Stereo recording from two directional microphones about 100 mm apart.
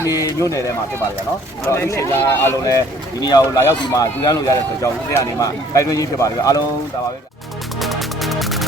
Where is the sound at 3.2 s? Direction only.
40° left (ahead or behind).